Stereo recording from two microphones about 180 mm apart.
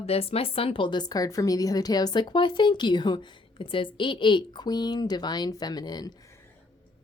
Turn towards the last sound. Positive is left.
turn(degrees=20)  # may be behind; listen again after turning